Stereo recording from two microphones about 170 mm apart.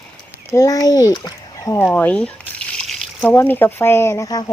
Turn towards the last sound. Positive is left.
turn(degrees=20)  # may be behind; listen again after turning